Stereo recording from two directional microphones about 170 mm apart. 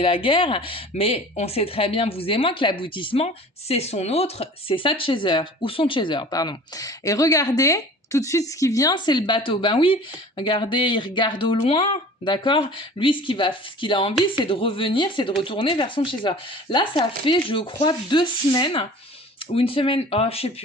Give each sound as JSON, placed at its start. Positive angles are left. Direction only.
{"t": 0.0, "sound": "speech", "side_deg": 30}